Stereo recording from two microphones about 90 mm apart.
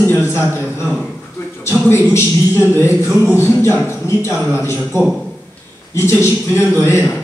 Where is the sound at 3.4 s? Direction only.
25° left (ahead or behind).